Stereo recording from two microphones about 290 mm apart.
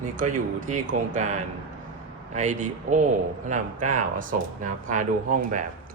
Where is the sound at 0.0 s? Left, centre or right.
Right.